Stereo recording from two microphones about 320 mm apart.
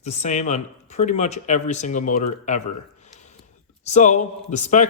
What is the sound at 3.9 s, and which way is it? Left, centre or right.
Speech, left.